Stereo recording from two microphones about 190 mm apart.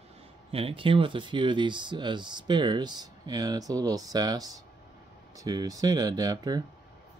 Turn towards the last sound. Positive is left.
turn(degrees=-20)  # may be behind; listen again after turning